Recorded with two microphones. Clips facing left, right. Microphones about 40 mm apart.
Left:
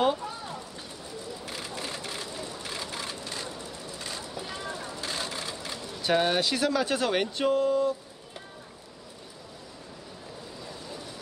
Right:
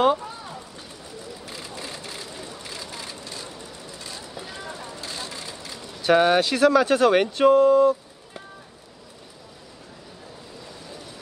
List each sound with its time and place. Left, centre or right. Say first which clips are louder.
1.8 s vehicle: even; left
2.2 s vehicle: even; right
2.7 s vehicle: left 1 dB; left
5.0 s vehicle: left 2 dB; left
6.0 s speech: right 7 dB; right